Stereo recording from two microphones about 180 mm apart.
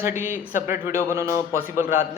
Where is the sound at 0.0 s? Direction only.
10° right (ahead or behind).